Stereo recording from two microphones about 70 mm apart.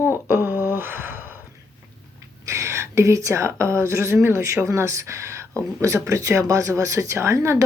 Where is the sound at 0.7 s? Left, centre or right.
Right.